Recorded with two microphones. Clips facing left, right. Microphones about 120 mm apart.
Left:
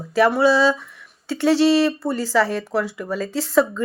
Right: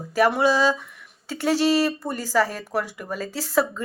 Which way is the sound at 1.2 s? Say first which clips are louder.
Left 5 dB; 40° right (ahead or behind).